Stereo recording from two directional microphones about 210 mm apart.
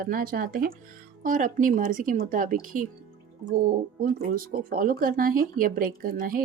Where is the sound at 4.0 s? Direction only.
45° right (ahead or behind).